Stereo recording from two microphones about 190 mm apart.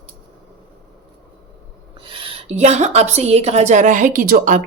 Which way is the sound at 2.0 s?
30° right (ahead or behind).